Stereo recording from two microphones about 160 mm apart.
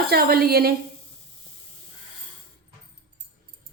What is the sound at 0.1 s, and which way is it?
Speech, 75° right (ahead or behind).